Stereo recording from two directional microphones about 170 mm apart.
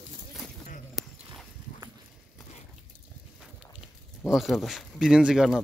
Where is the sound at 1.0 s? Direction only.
Centre (ahead or behind).